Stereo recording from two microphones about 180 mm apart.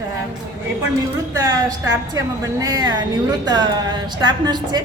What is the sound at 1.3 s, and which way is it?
A woman's voice, 20° right (ahead or behind).